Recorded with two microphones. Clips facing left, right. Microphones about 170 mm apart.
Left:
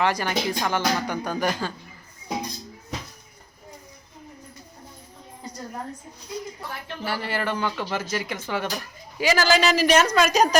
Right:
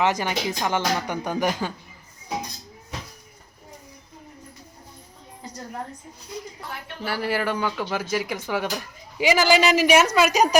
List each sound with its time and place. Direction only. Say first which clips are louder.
0.0 s speech: even; 20° right (ahead or behind)
7.0 s speech: right 3 dB; 5° right (ahead or behind)